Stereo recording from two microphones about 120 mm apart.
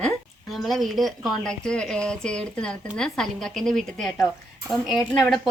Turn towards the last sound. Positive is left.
turn(degrees=0)  # may be behind; listen again after turning